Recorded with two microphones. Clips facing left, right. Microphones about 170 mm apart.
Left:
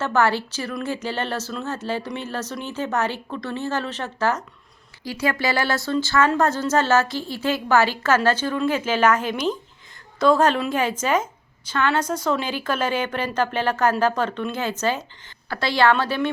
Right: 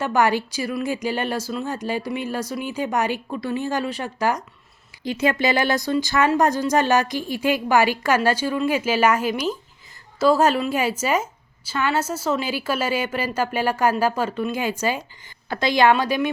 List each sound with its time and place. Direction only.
0.0 s speech: 15° right (ahead or behind)